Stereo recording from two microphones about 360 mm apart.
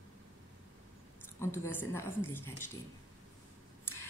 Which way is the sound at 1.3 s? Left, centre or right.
Centre.